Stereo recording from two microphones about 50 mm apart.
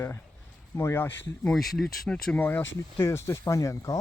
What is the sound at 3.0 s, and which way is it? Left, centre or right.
Speech, left.